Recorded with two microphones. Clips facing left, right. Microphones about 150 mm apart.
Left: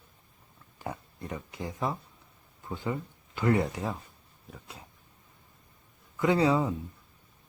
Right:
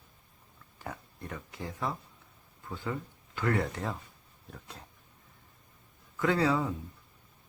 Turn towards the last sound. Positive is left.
turn(degrees=20)  # may be behind; listen again after turning